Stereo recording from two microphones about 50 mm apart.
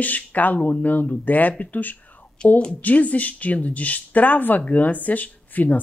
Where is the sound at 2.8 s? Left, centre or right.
Left.